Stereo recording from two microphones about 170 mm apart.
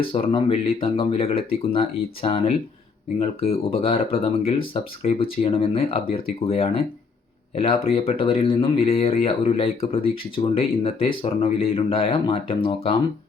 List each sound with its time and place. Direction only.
0.0 s speech: 30° left (ahead or behind)